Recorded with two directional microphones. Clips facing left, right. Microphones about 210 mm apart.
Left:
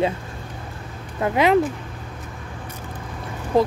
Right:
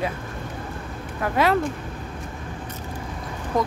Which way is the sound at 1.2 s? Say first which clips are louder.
Left 4 dB; 20° left (ahead or behind).